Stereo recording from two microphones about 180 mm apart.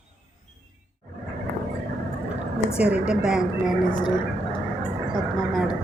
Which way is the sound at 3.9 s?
25° left (ahead or behind).